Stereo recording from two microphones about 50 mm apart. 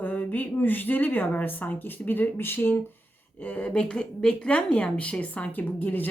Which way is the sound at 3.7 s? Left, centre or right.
Left.